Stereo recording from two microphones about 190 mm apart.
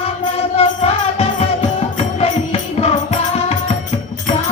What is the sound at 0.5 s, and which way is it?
Music, 30° left (ahead or behind).